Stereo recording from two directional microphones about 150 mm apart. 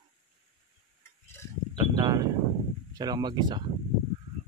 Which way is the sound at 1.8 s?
25° right (ahead or behind).